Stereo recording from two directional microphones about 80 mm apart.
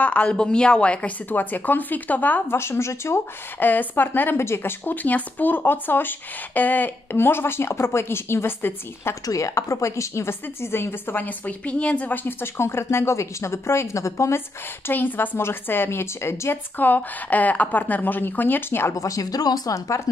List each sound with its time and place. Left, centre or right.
0.0 s a woman's voice: centre
2.5 s speech: left
9.2 s a woman's voice: left
14.9 s speech: left
18.9 s speech: left